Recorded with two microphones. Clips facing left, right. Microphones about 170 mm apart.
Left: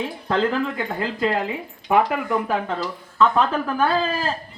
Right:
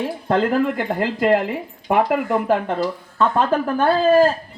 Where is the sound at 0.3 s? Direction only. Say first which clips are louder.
Right 3 dB; 55° right (ahead or behind).